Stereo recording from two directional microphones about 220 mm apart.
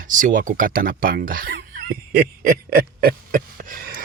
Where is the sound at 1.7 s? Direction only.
40° right (ahead or behind).